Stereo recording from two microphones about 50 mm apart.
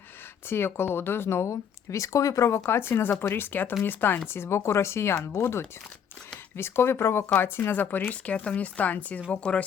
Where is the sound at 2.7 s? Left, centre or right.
Left.